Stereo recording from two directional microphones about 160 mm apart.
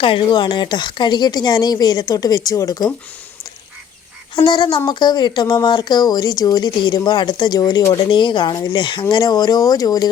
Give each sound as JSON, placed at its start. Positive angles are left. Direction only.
{"t": 0.0, "sound": "speech", "side_deg": 30}
{"t": 4.4, "sound": "speech", "side_deg": 30}